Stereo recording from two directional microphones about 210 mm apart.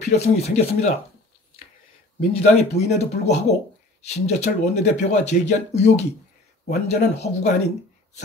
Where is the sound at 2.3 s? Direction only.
30° left (ahead or behind).